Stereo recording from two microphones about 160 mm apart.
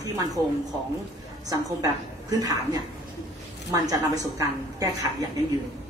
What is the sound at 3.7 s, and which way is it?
A woman's voice, 20° right (ahead or behind).